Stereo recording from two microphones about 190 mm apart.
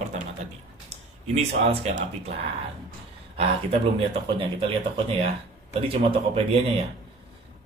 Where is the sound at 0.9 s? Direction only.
35° right (ahead or behind).